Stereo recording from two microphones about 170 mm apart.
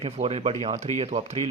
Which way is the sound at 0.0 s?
35° right (ahead or behind).